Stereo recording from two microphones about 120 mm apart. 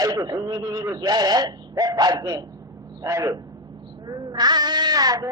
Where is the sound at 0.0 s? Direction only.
35° right (ahead or behind).